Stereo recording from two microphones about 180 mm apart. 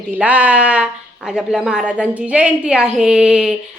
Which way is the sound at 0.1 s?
10° right (ahead or behind).